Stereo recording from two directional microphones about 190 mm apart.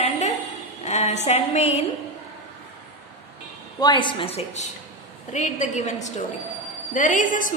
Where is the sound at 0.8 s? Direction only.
35° left (ahead or behind).